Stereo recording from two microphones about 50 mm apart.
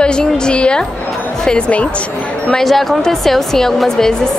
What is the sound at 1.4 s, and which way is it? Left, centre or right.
Music, centre.